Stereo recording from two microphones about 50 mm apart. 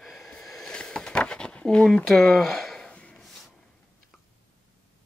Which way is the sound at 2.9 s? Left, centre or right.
Left.